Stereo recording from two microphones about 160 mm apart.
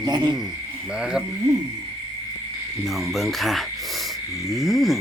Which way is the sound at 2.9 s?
Centre (ahead or behind).